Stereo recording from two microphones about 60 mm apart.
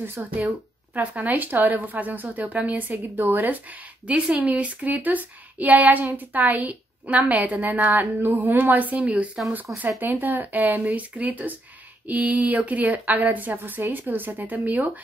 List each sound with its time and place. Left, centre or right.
0.0 s speech: right